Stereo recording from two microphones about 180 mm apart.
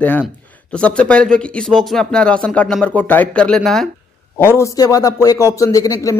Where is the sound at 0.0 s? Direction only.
5° left (ahead or behind).